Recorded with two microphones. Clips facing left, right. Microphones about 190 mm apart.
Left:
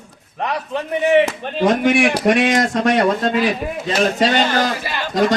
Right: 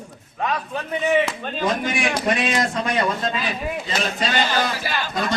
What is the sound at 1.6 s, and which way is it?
Speech, 70° left (ahead or behind).